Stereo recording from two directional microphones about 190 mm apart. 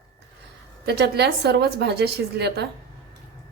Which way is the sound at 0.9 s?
60° right (ahead or behind).